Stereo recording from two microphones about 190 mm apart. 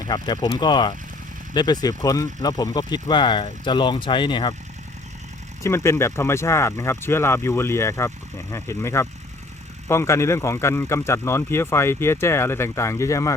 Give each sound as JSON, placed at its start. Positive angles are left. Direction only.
{"t": 0.0, "sound": "speech", "side_deg": 20}
{"t": 5.6, "sound": "speech", "side_deg": 15}